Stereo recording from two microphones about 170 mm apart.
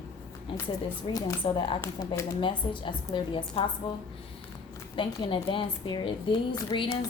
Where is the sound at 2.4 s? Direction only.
30° left (ahead or behind).